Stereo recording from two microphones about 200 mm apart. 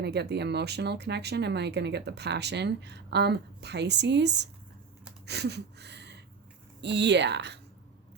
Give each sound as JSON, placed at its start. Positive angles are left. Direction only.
{"t": 0.0, "sound": "speech", "side_deg": -55}
{"t": 5.2, "sound": "a sound", "side_deg": -55}
{"t": 6.8, "sound": "speech", "side_deg": -60}